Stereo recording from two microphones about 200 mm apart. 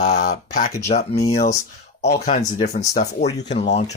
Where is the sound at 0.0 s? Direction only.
35° left (ahead or behind).